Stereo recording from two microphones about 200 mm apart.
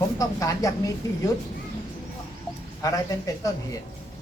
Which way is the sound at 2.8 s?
15° left (ahead or behind).